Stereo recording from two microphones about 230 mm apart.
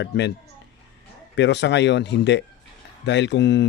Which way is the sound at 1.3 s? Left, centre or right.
Left.